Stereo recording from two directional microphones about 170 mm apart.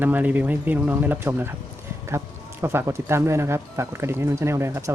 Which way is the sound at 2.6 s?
15° right (ahead or behind).